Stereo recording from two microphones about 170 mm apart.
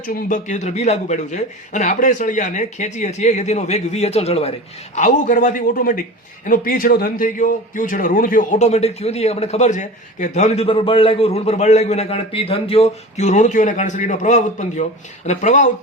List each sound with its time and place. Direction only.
0.0 s a man's voice: 55° left (ahead or behind); by 4.5 s 35° left (ahead or behind)
4.9 s a man's voice: 50° left (ahead or behind)